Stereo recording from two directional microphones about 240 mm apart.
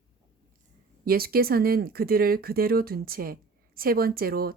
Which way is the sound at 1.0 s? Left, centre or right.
Right.